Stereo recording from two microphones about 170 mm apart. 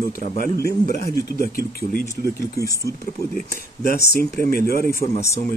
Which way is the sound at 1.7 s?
60° left (ahead or behind).